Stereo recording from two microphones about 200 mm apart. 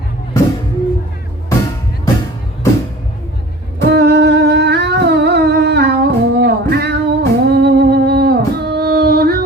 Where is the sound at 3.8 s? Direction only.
55° right (ahead or behind).